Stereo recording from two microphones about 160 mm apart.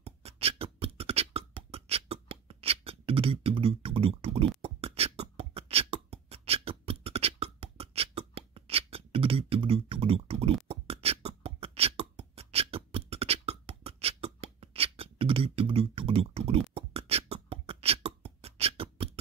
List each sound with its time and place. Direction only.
0.0 s beatboxing: 40° right (ahead or behind)